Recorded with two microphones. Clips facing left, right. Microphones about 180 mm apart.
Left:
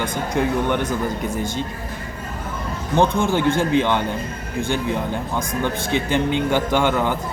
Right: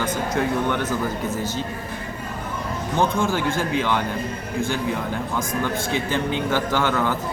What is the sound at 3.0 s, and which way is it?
A man's voice, 20° left (ahead or behind).